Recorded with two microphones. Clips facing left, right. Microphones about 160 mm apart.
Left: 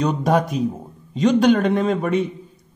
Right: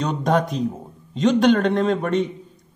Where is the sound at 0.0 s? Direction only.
5° left (ahead or behind).